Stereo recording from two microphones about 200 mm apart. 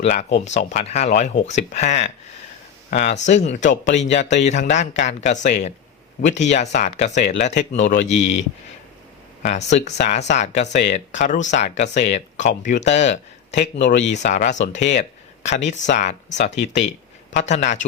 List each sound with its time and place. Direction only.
0.0 s speech: 35° left (ahead or behind)